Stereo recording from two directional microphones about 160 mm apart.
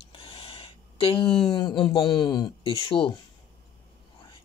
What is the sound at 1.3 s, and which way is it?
Speech, 30° left (ahead or behind).